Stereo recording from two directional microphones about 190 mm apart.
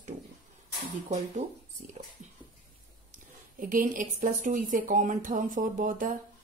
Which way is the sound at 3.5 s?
45° right (ahead or behind).